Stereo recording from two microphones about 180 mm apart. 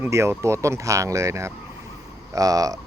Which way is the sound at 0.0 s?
15° right (ahead or behind).